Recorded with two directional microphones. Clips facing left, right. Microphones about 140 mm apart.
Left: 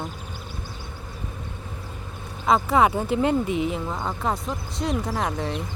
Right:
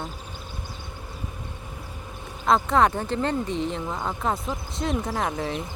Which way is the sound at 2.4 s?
5° left (ahead or behind).